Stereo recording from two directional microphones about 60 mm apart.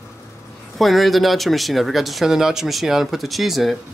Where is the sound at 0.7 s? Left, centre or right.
Centre.